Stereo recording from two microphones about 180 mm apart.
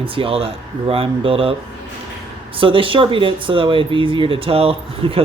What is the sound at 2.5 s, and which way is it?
Speech, 30° right (ahead or behind).